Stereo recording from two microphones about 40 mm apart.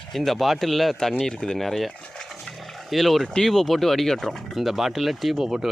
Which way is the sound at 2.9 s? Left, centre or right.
Centre.